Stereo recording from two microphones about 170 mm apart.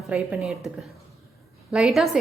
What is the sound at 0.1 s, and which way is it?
A woman's voice, 5° right (ahead or behind).